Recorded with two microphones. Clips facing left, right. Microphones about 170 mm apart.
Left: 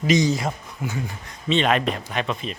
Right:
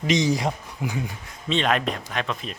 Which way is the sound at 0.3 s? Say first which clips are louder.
Even; 15° right (ahead or behind).